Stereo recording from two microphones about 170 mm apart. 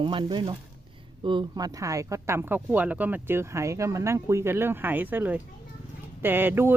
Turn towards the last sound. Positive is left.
turn(degrees=-10)  # may be behind; listen again after turning